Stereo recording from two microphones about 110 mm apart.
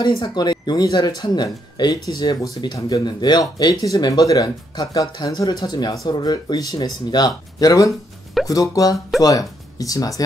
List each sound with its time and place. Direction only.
0.0 s speech: 40° left (ahead or behind)